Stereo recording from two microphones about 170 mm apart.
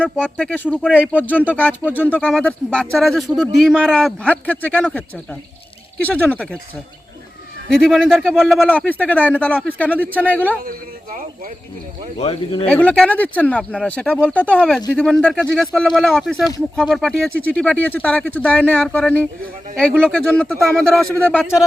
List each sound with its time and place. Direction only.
0.0 s speech: 5° left (ahead or behind)
7.7 s speech: 5° left (ahead or behind)
10.7 s speech: 55° right (ahead or behind)
12.1 s speech: 35° left (ahead or behind)
12.6 s speech: 10° left (ahead or behind)